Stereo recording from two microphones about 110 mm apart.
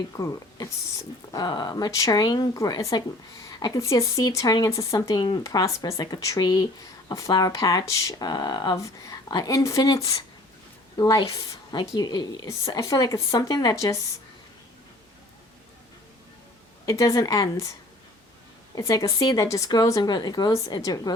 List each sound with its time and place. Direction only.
0.2 s a woman's voice: 30° left (ahead or behind)
16.8 s speech: 30° left (ahead or behind)